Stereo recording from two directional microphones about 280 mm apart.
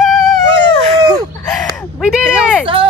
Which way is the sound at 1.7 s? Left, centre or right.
Centre.